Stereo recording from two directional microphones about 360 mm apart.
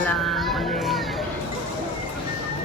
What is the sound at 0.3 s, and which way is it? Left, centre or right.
Music, centre.